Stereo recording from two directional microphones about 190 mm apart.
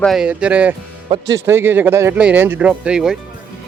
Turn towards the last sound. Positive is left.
turn(degrees=-5)  # may be behind; listen again after turning